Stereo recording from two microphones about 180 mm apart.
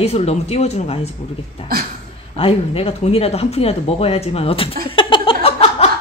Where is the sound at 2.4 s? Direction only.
30° left (ahead or behind).